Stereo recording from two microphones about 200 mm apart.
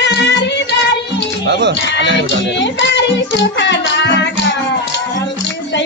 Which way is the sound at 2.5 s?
60° left (ahead or behind).